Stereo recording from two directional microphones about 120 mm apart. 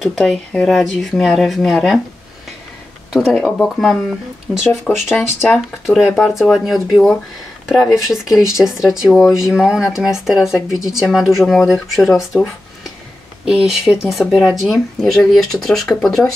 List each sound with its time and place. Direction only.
0.0 s speech: 5° left (ahead or behind)
3.3 s speech: 10° left (ahead or behind)
5.1 s speech: 20° left (ahead or behind)
5.9 s speech: 5° right (ahead or behind)
13.5 s speech: 5° right (ahead or behind)